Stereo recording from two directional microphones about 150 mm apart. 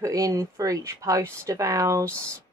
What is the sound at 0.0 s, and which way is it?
Speech, 20° right (ahead or behind).